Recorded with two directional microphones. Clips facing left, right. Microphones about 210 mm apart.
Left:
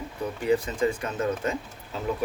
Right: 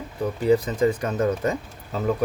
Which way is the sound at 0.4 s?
35° right (ahead or behind).